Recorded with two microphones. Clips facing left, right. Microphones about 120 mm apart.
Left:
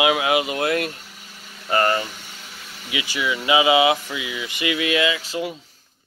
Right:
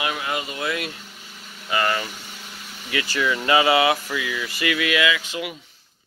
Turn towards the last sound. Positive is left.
turn(degrees=35)  # may be behind; listen again after turning